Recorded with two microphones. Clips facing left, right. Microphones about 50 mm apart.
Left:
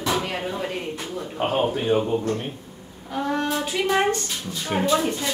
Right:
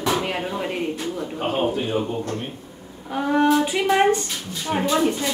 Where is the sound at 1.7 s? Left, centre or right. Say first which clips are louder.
Left 2 dB; left.